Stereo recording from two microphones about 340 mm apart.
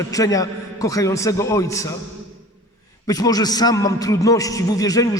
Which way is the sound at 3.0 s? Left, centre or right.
Centre.